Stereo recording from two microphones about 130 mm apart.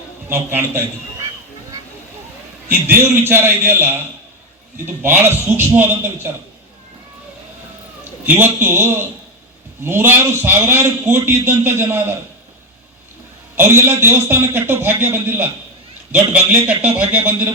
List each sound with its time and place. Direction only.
0.3 s a man's voice: 20° right (ahead or behind)
2.8 s a man's voice: 15° right (ahead or behind)
5.0 s a man's voice: 15° right (ahead or behind)
8.3 s a man's voice: 15° right (ahead or behind)
13.6 s a man's voice: 20° right (ahead or behind)